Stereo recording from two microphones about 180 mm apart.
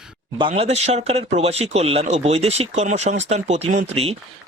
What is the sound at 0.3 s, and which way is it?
Speech, 30° right (ahead or behind).